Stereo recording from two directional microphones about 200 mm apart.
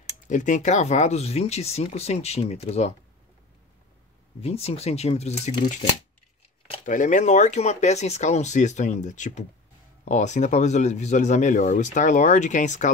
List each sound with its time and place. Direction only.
0.3 s speech: 40° left (ahead or behind)
4.4 s speech: 30° left (ahead or behind)
6.9 s speech: 40° left (ahead or behind)